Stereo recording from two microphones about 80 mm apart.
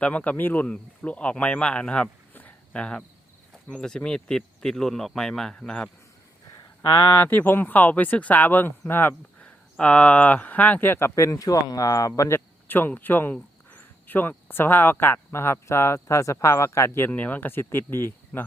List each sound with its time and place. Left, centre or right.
0.0 s speech: centre
7.1 s speech: left
11.1 s speech: left
12.3 s speech: left
17.1 s speech: centre